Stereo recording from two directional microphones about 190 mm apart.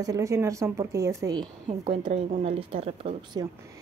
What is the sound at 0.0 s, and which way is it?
A woman's voice, 20° right (ahead or behind).